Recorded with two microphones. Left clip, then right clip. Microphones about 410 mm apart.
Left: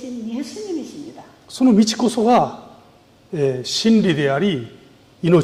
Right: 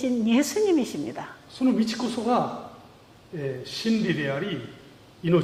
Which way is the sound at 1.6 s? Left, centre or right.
Left.